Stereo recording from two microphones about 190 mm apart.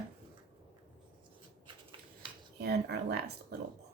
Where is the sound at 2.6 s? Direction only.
55° right (ahead or behind).